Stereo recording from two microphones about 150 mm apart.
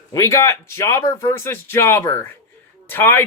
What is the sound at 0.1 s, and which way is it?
Speech, 20° left (ahead or behind).